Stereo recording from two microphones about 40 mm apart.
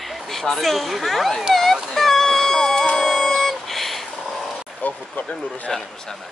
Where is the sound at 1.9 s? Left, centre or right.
Centre.